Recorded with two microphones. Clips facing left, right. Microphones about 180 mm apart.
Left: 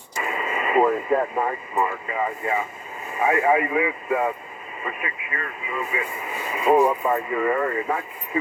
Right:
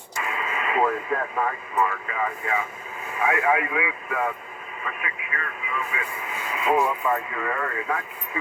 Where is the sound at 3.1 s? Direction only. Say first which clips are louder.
Left 3 dB; 30° left (ahead or behind).